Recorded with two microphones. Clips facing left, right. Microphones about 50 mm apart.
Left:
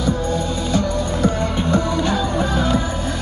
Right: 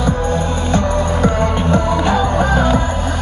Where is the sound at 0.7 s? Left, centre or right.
Right.